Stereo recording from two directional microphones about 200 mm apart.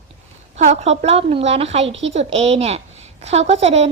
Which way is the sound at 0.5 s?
35° right (ahead or behind).